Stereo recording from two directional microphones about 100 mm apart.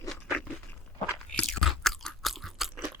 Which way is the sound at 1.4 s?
5° left (ahead or behind).